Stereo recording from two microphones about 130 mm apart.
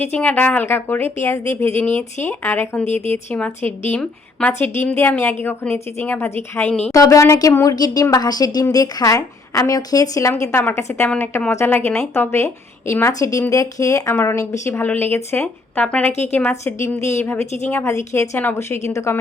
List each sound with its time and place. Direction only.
0.0 s speech: 10° left (ahead or behind)
6.9 s a woman's voice: 25° left (ahead or behind)